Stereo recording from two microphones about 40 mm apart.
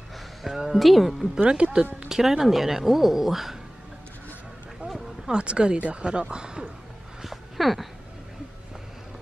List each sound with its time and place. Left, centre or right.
0.5 s speech: centre
0.7 s speech: centre
1.4 s speech: right
2.0 s speech: centre
4.8 s a sound: centre
5.3 s speech: right
7.2 s a sound: centre